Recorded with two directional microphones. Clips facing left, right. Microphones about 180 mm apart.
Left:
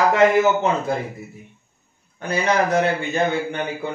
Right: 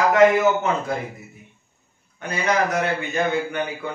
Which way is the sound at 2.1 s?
30° left (ahead or behind).